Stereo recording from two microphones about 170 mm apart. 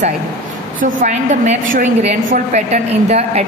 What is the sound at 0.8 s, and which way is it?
A woman's voice, 45° right (ahead or behind).